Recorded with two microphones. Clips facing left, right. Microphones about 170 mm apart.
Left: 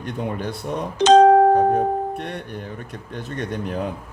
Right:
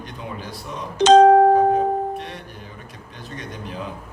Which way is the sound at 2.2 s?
55° left (ahead or behind).